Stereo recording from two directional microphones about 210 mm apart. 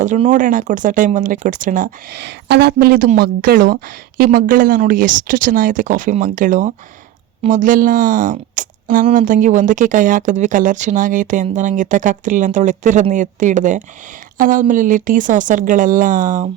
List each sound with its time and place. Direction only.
0.0 s speech: 35° right (ahead or behind); by 2.7 s 55° right (ahead or behind)
2.7 s speech: 45° right (ahead or behind)